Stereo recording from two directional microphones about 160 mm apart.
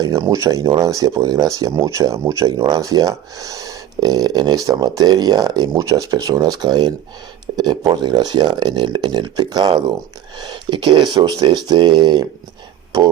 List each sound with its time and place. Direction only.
0.0 s speech: 20° right (ahead or behind)